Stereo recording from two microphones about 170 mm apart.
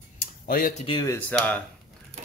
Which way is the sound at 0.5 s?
55° left (ahead or behind).